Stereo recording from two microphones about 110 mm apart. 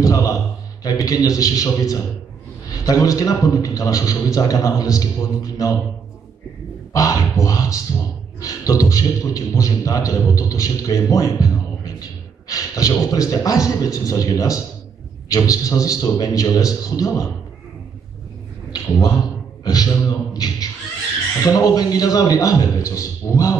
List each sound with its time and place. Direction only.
0.0 s a sound: 30° left (ahead or behind)
0.8 s a man's voice: 35° left (ahead or behind)
6.9 s a man's voice: 30° left (ahead or behind)
19.6 s a man's voice: 35° left (ahead or behind)